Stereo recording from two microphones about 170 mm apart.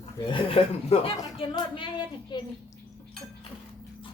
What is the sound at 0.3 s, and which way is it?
Speech, 30° left (ahead or behind).